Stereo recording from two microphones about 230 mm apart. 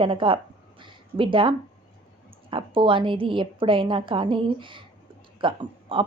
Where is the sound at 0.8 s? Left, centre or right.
Right.